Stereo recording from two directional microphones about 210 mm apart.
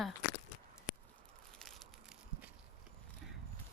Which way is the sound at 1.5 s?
Centre (ahead or behind).